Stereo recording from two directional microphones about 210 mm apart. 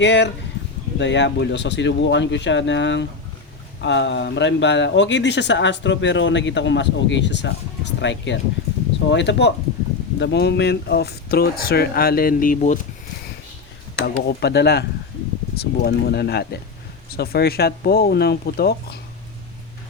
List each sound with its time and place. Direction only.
0.0 s speech: 55° left (ahead or behind); by 12.8 s 40° left (ahead or behind)
13.9 s speech: 50° left (ahead or behind)